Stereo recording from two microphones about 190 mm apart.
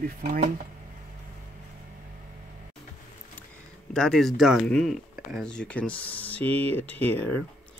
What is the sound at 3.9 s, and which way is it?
Speech, centre (ahead or behind).